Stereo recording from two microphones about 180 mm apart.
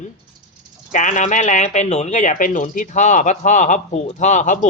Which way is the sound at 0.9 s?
45° left (ahead or behind).